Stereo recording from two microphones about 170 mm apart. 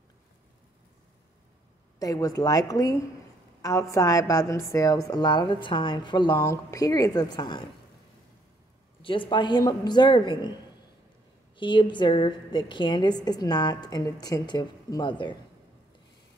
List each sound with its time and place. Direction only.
2.0 s a woman's voice: 20° left (ahead or behind)
9.0 s a woman's voice: 30° left (ahead or behind)
11.5 s a woman's voice: 30° left (ahead or behind)